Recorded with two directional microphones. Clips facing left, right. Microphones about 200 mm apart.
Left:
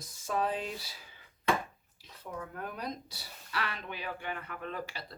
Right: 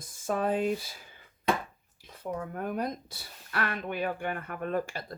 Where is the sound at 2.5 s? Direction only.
50° right (ahead or behind).